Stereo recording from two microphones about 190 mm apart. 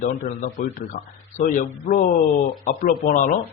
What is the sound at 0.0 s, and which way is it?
A man's voice, 45° left (ahead or behind).